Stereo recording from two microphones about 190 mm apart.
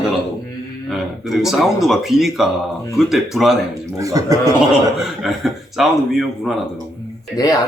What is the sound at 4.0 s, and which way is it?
Speech, 15° right (ahead or behind).